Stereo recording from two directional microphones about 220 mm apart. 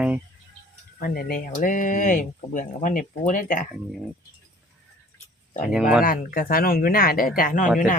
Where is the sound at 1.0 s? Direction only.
40° left (ahead or behind).